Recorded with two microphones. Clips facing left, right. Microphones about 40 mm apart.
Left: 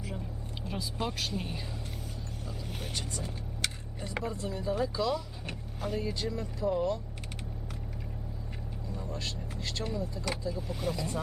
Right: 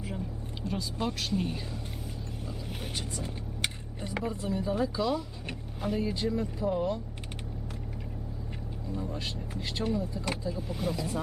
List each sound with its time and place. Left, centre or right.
0.6 s speech: centre
2.6 s speech: centre
3.2 s vehicle: right
4.4 s speech: centre
8.9 s speech: centre